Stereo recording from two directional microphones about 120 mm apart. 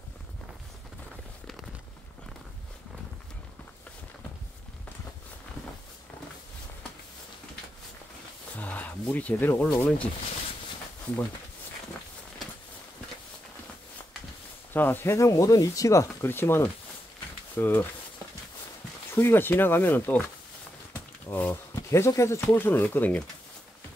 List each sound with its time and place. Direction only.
8.5 s speech: 15° left (ahead or behind)
14.7 s speech: 15° left (ahead or behind)
19.1 s speech: 20° left (ahead or behind)